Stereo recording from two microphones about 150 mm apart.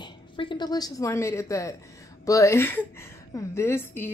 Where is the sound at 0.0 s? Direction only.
30° left (ahead or behind).